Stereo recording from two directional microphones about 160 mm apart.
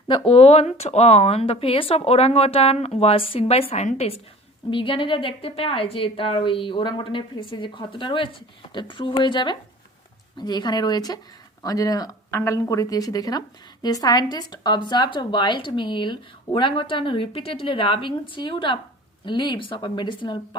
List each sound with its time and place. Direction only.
0.1 s a woman's voice: 35° left (ahead or behind)